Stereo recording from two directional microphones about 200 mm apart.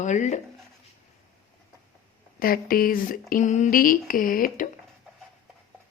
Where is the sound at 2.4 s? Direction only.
45° left (ahead or behind).